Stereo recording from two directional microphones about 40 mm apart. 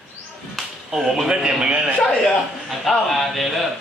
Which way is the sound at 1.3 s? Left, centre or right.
Centre.